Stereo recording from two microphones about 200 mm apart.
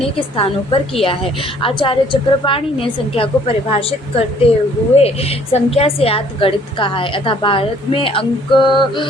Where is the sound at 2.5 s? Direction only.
25° left (ahead or behind).